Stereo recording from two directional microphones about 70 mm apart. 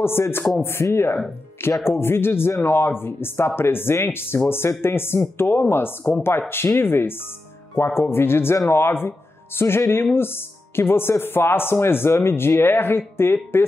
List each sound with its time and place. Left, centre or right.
0.0 s speech: left